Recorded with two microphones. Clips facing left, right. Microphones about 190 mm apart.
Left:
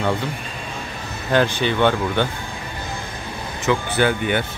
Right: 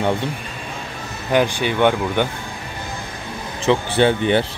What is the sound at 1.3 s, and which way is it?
Speech, 10° right (ahead or behind).